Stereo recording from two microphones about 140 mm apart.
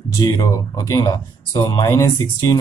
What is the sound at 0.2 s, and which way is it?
Speech, 25° left (ahead or behind).